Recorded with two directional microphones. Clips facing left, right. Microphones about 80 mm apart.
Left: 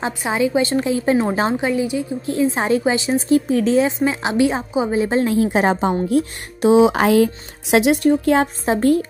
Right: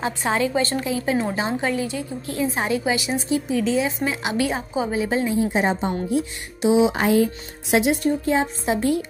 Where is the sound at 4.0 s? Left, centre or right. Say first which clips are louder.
Left 6 dB; left.